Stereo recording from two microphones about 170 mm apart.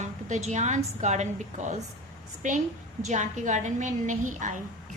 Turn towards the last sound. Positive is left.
turn(degrees=-50)  # may be behind; listen again after turning